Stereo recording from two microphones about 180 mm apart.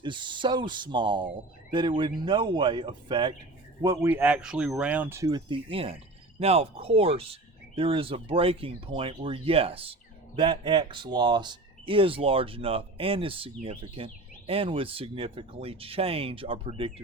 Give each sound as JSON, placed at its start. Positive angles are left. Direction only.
{"t": 0.0, "sound": "speech", "side_deg": -25}
{"t": 3.8, "sound": "speech", "side_deg": -10}